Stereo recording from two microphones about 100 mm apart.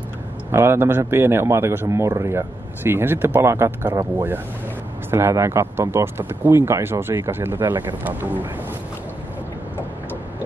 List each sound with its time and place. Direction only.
0.5 s a man's voice: 25° right (ahead or behind)
5.1 s a man's voice: 25° right (ahead or behind)